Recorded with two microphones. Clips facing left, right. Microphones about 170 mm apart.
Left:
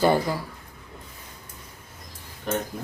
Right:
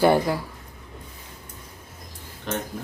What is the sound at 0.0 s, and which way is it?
Speech, 15° right (ahead or behind).